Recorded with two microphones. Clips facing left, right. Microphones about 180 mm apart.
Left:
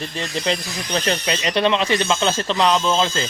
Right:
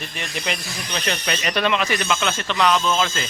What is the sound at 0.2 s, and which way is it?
Speech, 30° left (ahead or behind).